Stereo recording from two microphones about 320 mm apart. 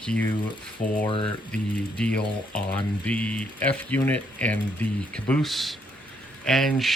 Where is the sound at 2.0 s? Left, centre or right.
Centre.